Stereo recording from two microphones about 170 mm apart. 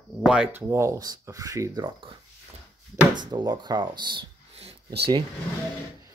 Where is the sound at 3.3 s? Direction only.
25° right (ahead or behind).